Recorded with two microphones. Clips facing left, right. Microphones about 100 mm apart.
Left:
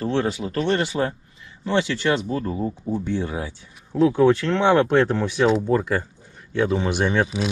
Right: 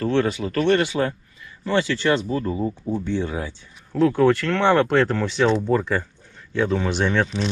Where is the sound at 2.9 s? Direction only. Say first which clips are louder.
Even; 10° left (ahead or behind).